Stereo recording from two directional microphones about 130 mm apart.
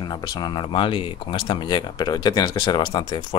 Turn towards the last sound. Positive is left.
turn(degrees=35)  # may be behind; listen again after turning